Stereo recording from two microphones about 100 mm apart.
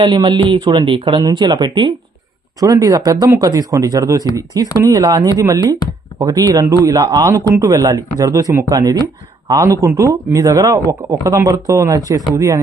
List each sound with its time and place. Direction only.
0.0 s speech: 50° right (ahead or behind)
0.9 s speech: 55° right (ahead or behind)
1.2 s speech: 45° right (ahead or behind)
2.6 s a man's voice: 35° right (ahead or behind)